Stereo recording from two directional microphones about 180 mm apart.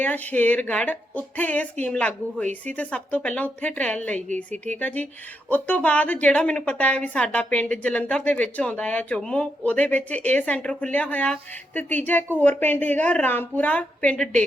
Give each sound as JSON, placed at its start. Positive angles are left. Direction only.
{"t": 0.0, "sound": "a woman's voice", "side_deg": 10}
{"t": 4.5, "sound": "speech", "side_deg": -40}
{"t": 4.8, "sound": "a woman's voice", "side_deg": 10}